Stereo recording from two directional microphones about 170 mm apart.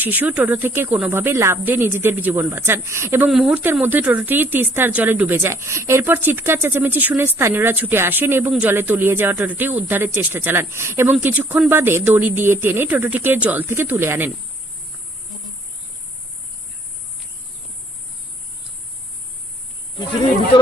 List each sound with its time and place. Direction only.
0.0 s speech: 10° right (ahead or behind)
3.2 s speech: 5° right (ahead or behind)